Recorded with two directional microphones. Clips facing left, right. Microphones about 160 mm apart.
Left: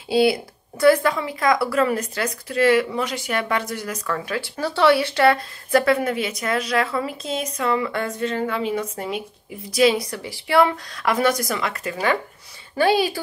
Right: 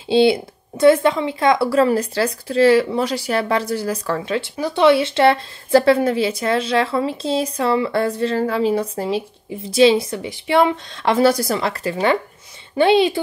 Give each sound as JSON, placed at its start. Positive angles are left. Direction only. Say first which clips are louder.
{"t": 0.1, "sound": "a woman's voice", "louder": "right 4 dB", "side_deg": -25}
{"t": 4.6, "sound": "a woman's voice", "louder": "right 3 dB", "side_deg": -15}